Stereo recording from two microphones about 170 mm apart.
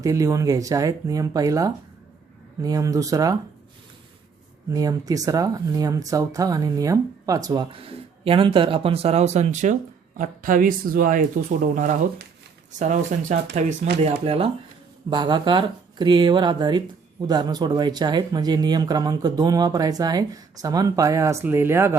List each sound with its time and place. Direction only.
0.0 s speech: 20° right (ahead or behind)
4.7 s speech: 20° right (ahead or behind); by 13.7 s 45° right (ahead or behind)
14.0 s speech: 35° right (ahead or behind); by 21.9 s 15° right (ahead or behind)